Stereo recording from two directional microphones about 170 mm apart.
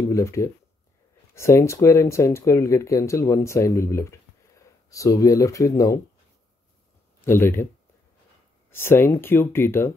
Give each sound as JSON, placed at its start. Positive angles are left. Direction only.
{"t": 0.0, "sound": "speech", "side_deg": 15}
{"t": 7.2, "sound": "speech", "side_deg": 15}
{"t": 8.6, "sound": "speech", "side_deg": 15}